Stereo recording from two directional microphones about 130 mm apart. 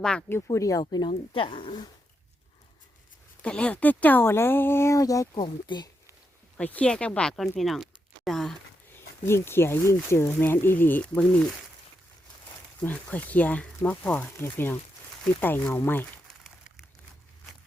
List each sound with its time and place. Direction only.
0.0 s speech: 5° left (ahead or behind)
0.5 s speech: 25° left (ahead or behind)
3.4 s speech: 10° left (ahead or behind); by 5.9 s 35° left (ahead or behind)
6.6 s speech: 10° left (ahead or behind)
8.9 s speech: 20° left (ahead or behind)
12.8 s speech: 10° left (ahead or behind)